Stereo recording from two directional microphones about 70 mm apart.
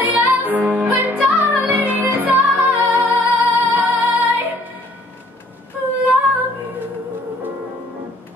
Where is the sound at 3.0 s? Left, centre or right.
Right.